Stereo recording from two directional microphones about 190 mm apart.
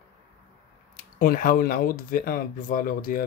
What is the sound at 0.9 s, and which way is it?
Speech, 45° left (ahead or behind).